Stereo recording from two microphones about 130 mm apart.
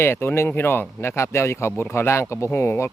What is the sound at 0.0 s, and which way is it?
Speech, 20° left (ahead or behind).